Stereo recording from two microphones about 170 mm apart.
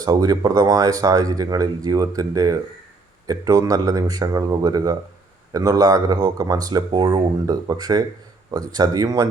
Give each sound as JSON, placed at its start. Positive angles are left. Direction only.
{"t": 0.0, "sound": "speech", "side_deg": -20}